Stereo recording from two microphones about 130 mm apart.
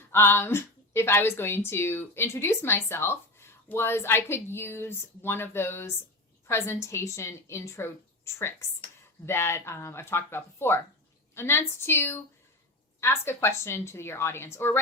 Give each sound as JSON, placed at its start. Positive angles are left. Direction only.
{"t": 0.1, "sound": "a woman's voice", "side_deg": 15}